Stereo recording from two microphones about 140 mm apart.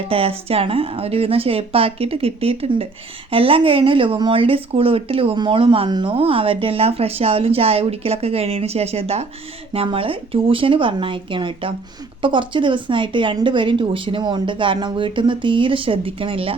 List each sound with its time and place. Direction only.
0.1 s speech: 45° right (ahead or behind)